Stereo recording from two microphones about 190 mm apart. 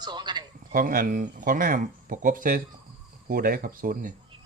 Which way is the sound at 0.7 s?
45° right (ahead or behind).